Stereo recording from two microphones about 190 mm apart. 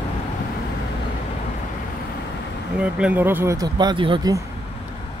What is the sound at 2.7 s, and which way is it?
Speech, 5° right (ahead or behind).